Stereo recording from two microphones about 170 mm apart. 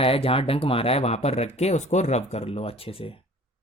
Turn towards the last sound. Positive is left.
turn(degrees=35)  # may be behind; listen again after turning